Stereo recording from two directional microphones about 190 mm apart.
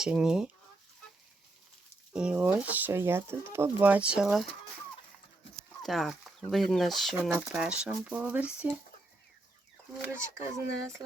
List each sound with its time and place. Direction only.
0.0 s speech: 5° right (ahead or behind)
2.1 s speech: 5° right (ahead or behind)
5.8 s speech: centre (ahead or behind)
10.1 s speech: 15° right (ahead or behind)